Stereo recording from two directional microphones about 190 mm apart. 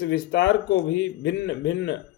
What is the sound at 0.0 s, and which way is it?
Speech, 60° left (ahead or behind).